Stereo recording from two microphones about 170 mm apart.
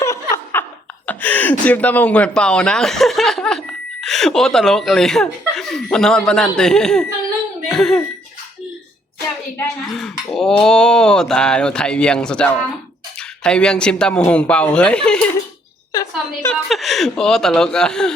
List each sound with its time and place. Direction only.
0.0 s laughter: 20° left (ahead or behind)
1.0 s speech: 10° left (ahead or behind)
7.7 s cough: centre (ahead or behind)
10.0 s speech: centre (ahead or behind)
15.9 s a sound: 20° left (ahead or behind)
16.5 s speech: centre (ahead or behind)